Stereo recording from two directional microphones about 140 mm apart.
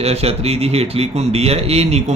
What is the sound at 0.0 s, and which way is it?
Speech, 45° right (ahead or behind).